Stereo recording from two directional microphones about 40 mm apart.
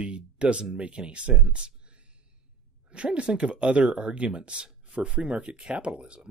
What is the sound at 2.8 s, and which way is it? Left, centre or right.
Speech, right.